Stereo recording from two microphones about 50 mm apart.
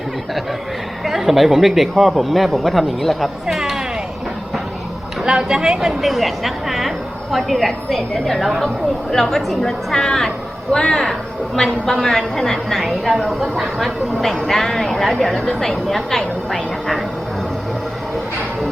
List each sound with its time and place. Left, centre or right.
1.0 s a woman's voice: centre
3.4 s a sound: centre
5.2 s speech: centre
6.0 s a woman's voice: centre